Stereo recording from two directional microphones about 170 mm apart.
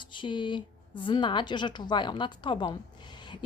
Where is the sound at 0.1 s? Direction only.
30° left (ahead or behind).